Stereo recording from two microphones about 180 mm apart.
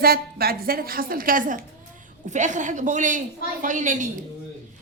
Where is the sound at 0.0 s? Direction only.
60° right (ahead or behind).